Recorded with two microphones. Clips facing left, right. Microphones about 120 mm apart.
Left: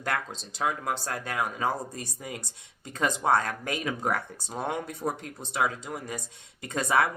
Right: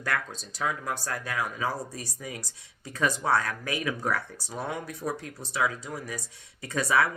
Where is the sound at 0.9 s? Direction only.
25° left (ahead or behind).